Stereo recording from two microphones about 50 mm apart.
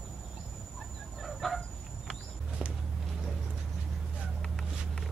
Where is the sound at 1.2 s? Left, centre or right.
Centre.